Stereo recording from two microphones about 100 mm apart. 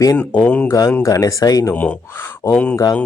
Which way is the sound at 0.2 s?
10° left (ahead or behind).